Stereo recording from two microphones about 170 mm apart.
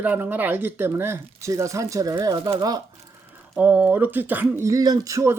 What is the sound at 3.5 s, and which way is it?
Speech, 10° right (ahead or behind).